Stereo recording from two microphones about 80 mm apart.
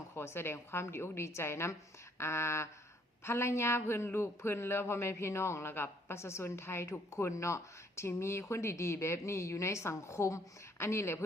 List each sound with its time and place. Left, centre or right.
0.2 s speech: left